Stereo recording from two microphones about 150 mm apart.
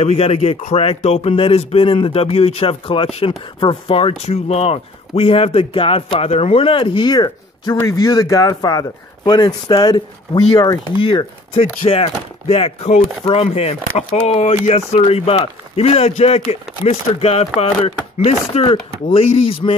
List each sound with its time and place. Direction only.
0.0 s a man's voice: 40° left (ahead or behind)